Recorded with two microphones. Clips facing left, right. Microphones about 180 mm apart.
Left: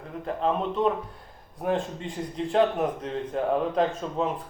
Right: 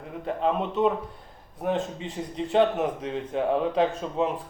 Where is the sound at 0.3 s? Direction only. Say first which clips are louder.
Even; 5° right (ahead or behind).